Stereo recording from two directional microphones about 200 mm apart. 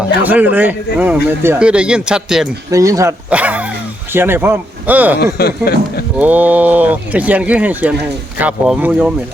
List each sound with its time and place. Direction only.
0.2 s speech: 10° right (ahead or behind)
2.6 s speech: 15° right (ahead or behind)
5.2 s speech: 50° left (ahead or behind)
6.1 s speech: 10° right (ahead or behind)